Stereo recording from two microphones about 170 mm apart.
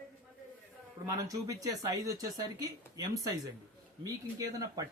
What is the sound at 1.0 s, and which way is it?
Speech, 20° right (ahead or behind).